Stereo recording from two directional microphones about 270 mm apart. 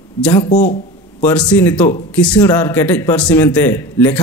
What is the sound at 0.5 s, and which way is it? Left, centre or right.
Speech, left.